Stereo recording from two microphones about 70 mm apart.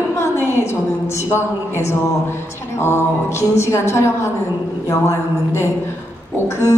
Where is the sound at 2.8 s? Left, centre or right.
Left.